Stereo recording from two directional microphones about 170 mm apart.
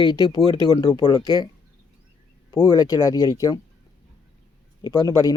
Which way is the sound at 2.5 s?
25° left (ahead or behind).